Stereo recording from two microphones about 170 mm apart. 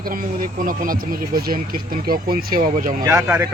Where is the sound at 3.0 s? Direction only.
20° right (ahead or behind).